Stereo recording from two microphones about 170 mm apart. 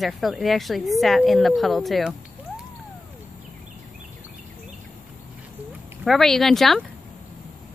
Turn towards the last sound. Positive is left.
turn(degrees=0)  # may be behind; listen again after turning